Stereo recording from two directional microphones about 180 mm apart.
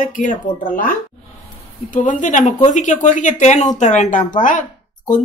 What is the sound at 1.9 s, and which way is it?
Speech, 45° left (ahead or behind).